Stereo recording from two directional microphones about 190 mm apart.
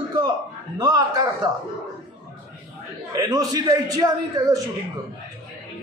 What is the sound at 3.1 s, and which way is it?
A man's voice, 20° right (ahead or behind).